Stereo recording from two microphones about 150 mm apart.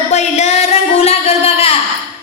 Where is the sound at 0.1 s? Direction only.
50° left (ahead or behind).